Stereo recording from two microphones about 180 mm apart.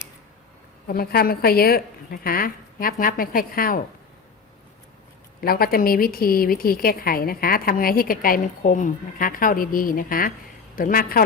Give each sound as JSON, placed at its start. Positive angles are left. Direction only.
{"t": 0.9, "sound": "a woman's voice", "side_deg": 55}
{"t": 5.4, "sound": "a woman's voice", "side_deg": 55}